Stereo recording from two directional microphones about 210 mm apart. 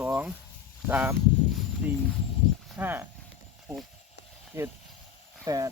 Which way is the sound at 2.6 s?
10° right (ahead or behind).